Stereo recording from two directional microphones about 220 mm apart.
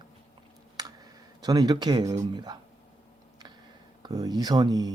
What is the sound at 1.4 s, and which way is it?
Speech, 20° right (ahead or behind).